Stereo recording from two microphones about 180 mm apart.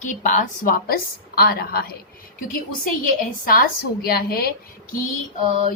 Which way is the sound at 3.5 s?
55° left (ahead or behind).